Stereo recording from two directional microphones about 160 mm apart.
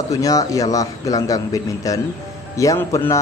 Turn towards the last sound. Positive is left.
turn(degrees=15)  # may be behind; listen again after turning